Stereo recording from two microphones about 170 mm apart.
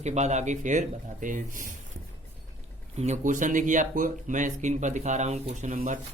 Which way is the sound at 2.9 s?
40° right (ahead or behind).